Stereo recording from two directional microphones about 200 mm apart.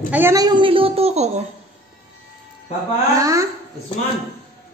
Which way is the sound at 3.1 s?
15° right (ahead or behind).